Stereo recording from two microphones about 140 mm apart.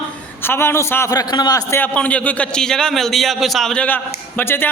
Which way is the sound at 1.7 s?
10° left (ahead or behind).